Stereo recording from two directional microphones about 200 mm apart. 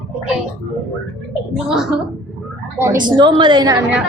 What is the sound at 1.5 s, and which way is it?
Speech, centre (ahead or behind).